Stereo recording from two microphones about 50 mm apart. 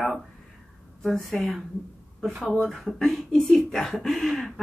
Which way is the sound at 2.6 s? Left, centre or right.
Centre.